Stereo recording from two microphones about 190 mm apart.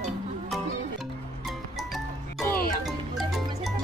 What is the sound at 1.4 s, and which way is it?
Music, centre (ahead or behind).